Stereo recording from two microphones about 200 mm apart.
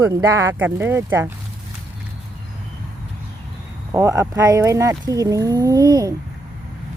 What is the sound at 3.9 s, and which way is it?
Speech, 15° right (ahead or behind).